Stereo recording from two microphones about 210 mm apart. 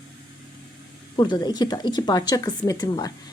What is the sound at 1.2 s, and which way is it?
A woman's voice, 20° left (ahead or behind).